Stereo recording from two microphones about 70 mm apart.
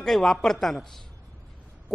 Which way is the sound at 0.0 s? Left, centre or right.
Centre.